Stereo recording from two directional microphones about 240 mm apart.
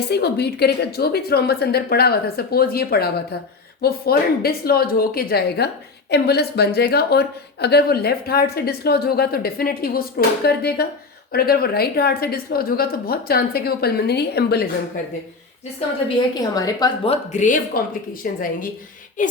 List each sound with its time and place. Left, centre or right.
0.1 s speech: left
16.0 s a woman's voice: centre
17.3 s speech: left